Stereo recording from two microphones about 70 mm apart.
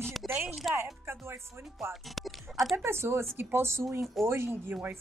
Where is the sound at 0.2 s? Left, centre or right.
Centre.